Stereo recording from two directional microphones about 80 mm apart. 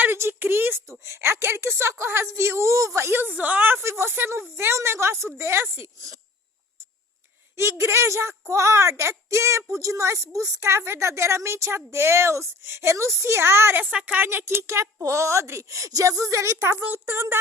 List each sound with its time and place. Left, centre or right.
0.0 s a woman's voice: right
7.5 s a woman's voice: right
13.9 s speech: centre
14.3 s a woman's voice: right
16.8 s speech: right